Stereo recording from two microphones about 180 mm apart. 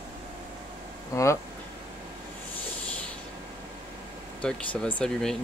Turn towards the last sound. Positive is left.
turn(degrees=5)  # may be behind; listen again after turning